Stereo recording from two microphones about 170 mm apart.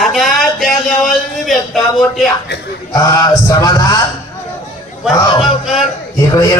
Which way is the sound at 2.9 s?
20° left (ahead or behind).